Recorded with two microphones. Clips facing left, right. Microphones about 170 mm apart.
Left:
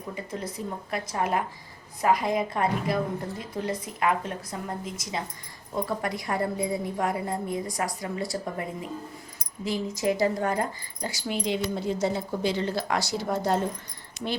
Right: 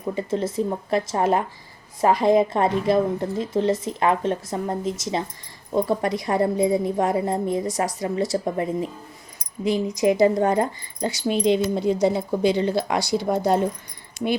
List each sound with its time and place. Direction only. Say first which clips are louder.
0.1 s a woman's voice: right 10 dB; 25° right (ahead or behind)